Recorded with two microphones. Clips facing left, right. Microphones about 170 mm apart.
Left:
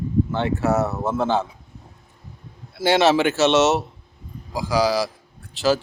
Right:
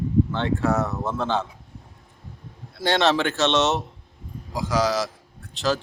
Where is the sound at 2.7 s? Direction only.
5° left (ahead or behind).